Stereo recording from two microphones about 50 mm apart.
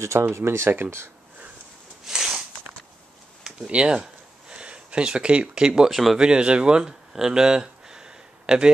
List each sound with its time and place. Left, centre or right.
0.0 s speech: right
0.7 s speech: right
2.0 s a sound: centre
3.4 s a sound: centre
5.9 s speech: centre
6.1 s speech: centre